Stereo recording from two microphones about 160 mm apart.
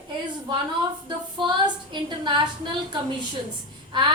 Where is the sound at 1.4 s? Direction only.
30° right (ahead or behind).